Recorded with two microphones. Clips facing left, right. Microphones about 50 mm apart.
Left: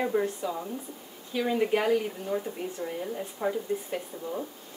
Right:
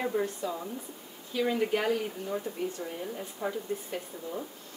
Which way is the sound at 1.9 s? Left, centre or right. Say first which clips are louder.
Left 4 dB; centre.